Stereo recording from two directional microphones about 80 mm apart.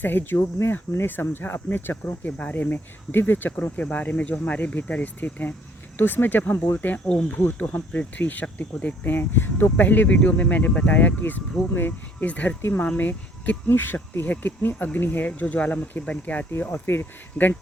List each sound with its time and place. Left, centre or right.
0.0 s speech: left
16.5 s speech: left